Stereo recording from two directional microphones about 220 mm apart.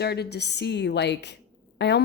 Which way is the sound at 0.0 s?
50° left (ahead or behind).